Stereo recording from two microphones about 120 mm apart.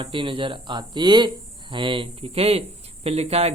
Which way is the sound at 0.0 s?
45° right (ahead or behind).